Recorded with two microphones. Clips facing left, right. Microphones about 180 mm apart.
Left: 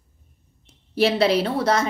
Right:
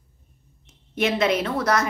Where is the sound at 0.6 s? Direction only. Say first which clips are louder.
Left 4 dB; 35° left (ahead or behind).